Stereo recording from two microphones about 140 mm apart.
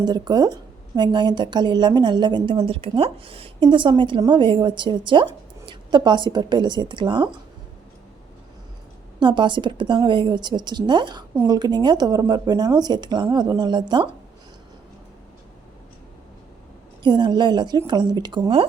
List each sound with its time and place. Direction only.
0.0 s a woman's voice: 30° right (ahead or behind)
9.2 s a woman's voice: 35° right (ahead or behind)
17.0 s a woman's voice: 35° right (ahead or behind)